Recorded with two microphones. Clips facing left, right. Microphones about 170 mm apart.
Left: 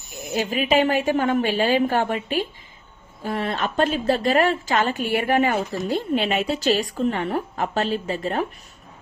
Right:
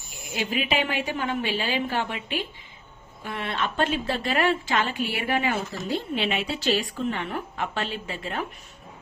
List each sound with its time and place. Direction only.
0.3 s a woman's voice: 45° left (ahead or behind)